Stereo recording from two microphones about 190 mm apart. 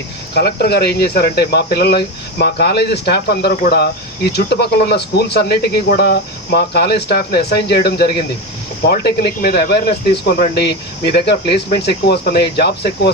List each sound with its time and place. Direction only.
0.3 s speech: 55° left (ahead or behind)